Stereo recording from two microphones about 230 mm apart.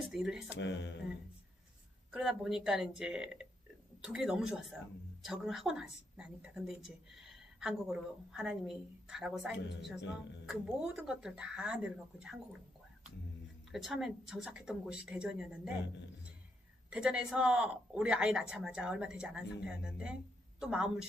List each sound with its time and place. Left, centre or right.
0.0 s a woman's voice: centre
0.5 s speech: left
2.1 s a woman's voice: centre
13.7 s a woman's voice: centre
16.9 s a woman's voice: centre